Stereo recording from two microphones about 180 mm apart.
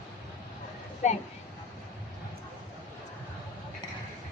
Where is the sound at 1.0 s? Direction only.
40° left (ahead or behind).